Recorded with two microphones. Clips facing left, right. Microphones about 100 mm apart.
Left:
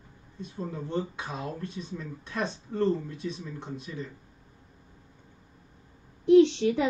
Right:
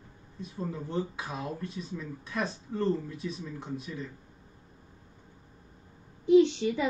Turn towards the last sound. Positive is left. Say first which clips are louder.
# left 3 dB
turn(degrees=75)  # may be behind; listen again after turning